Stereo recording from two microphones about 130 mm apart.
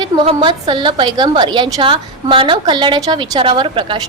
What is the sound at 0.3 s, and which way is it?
A woman's voice, 35° right (ahead or behind).